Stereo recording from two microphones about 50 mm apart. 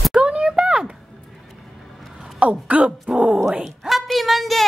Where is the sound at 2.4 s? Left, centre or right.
Right.